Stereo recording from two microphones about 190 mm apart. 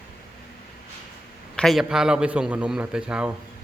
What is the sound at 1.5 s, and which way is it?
A man's voice, centre (ahead or behind).